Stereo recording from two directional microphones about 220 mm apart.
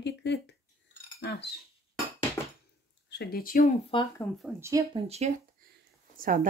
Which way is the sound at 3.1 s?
45° left (ahead or behind).